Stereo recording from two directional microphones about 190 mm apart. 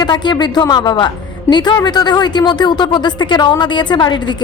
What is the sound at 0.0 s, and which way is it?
A woman's voice, 25° left (ahead or behind).